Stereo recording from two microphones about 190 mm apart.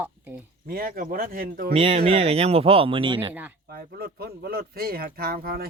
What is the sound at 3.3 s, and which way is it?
Speech, 10° right (ahead or behind).